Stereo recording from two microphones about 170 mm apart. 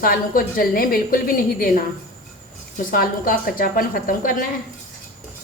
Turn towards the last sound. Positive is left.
turn(degrees=55)  # may be behind; listen again after turning